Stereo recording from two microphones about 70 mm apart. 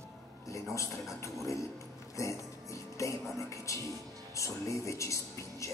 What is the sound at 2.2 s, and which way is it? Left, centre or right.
Music, left.